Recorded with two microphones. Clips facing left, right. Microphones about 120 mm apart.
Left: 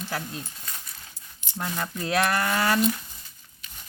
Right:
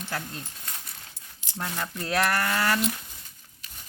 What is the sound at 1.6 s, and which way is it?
Coin, 10° left (ahead or behind).